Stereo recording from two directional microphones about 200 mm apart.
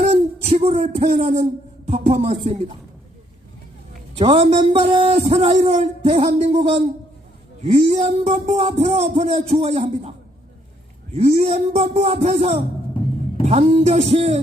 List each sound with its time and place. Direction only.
0.0 s a sound: 35° right (ahead or behind)
1.9 s speech: 30° right (ahead or behind)
4.1 s a man's voice: 30° right (ahead or behind)
12.9 s music: 25° left (ahead or behind)
13.4 s speech: 35° right (ahead or behind)